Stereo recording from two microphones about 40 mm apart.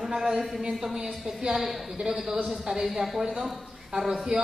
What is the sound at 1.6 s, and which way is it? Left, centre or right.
Speech, centre.